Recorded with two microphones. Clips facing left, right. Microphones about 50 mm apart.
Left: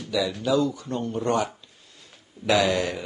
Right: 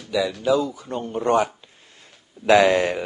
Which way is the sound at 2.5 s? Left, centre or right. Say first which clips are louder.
Right 6 dB; right.